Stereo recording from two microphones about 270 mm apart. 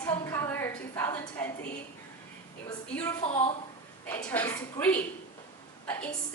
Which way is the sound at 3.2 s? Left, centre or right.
Left.